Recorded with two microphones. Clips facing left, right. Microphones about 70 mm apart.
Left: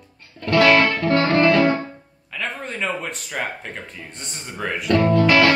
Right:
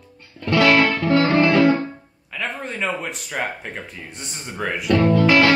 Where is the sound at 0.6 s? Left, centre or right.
Centre.